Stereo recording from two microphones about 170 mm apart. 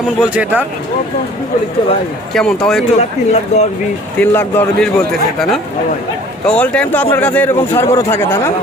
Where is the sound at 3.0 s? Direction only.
40° left (ahead or behind).